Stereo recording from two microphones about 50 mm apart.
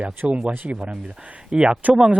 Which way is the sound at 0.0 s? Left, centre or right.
Right.